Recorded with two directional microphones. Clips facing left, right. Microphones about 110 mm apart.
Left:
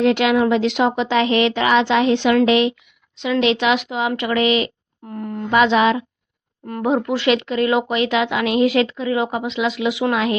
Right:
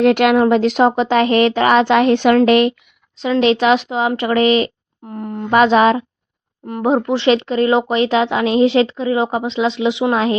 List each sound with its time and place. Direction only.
0.0 s speech: 55° right (ahead or behind)
3.2 s speech: 35° right (ahead or behind)
5.1 s a sound: 25° right (ahead or behind)
5.5 s speech: 40° right (ahead or behind)
6.7 s speech: 20° right (ahead or behind)